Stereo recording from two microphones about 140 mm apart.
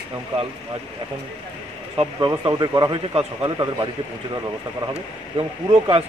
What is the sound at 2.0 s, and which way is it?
Speech, 35° right (ahead or behind).